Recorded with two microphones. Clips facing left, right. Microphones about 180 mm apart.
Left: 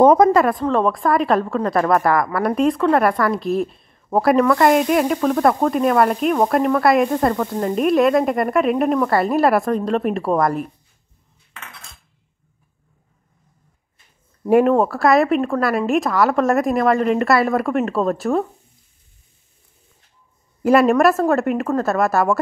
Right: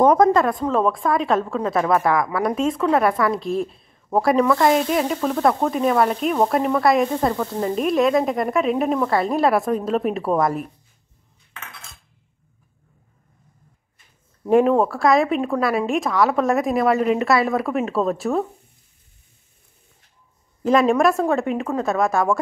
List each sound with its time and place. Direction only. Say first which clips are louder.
0.0 s speech: left 3 dB; 25° left (ahead or behind)
0.3 s a woman's voice: left 2 dB; 5° left (ahead or behind)
14.4 s a woman's voice: left 2 dB; centre (ahead or behind)
20.6 s a woman's voice: left 3 dB; 5° left (ahead or behind)